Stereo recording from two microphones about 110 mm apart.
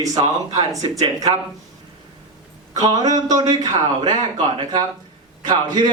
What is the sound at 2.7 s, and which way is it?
A man's voice, 35° right (ahead or behind).